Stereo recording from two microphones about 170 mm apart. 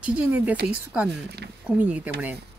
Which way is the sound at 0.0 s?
10° right (ahead or behind).